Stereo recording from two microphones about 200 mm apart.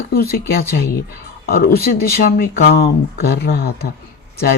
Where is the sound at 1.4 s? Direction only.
50° left (ahead or behind).